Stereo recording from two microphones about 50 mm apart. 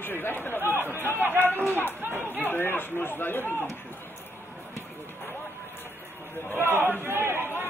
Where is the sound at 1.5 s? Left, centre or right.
Left.